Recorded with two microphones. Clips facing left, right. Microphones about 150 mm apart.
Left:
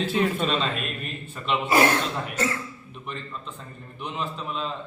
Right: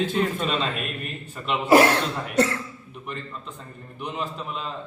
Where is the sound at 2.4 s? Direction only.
70° right (ahead or behind).